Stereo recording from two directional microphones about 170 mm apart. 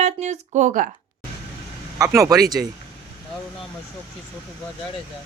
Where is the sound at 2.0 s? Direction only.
20° right (ahead or behind).